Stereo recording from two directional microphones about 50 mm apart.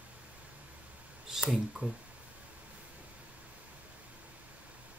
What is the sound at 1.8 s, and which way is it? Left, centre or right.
Speech, right.